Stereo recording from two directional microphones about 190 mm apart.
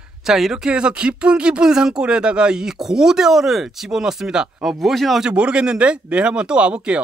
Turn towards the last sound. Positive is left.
turn(degrees=-5)  # may be behind; listen again after turning